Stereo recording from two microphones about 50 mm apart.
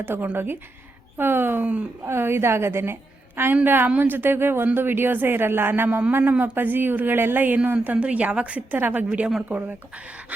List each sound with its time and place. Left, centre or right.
0.0 s speech: right
1.6 s a woman's voice: right
2.0 s a woman's voice: right
8.0 s a woman's voice: right
8.7 s speech: right
9.0 s a woman's voice: right
9.5 s speech: right